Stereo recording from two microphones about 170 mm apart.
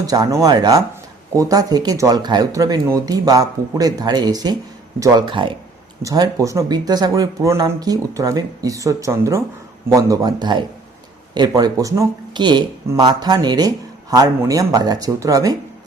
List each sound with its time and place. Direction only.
0.0 s speech: 20° right (ahead or behind)